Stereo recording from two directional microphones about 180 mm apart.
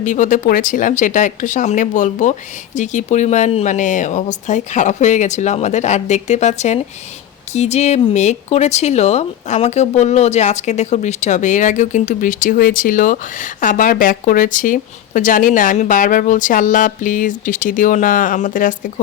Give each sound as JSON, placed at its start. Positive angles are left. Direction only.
{"t": 0.0, "sound": "speech", "side_deg": 45}